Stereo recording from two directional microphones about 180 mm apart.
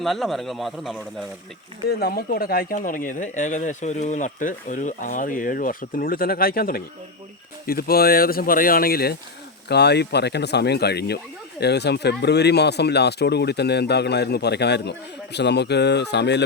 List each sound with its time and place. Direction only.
0.0 s speech: centre (ahead or behind)
1.9 s speech: 60° left (ahead or behind)